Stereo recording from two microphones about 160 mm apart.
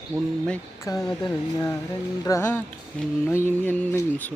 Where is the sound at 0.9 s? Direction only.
20° left (ahead or behind).